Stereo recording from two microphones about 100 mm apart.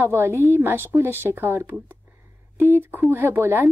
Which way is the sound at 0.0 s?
25° right (ahead or behind).